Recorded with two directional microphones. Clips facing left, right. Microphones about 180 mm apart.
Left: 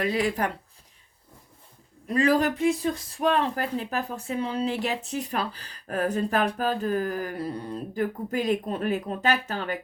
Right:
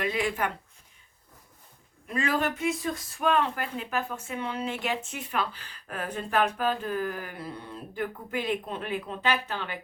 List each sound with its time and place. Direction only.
0.0 s speech: 40° left (ahead or behind)
2.0 s speech: 35° left (ahead or behind)